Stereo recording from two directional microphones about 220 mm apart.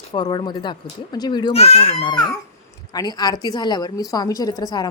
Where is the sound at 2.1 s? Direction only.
20° left (ahead or behind).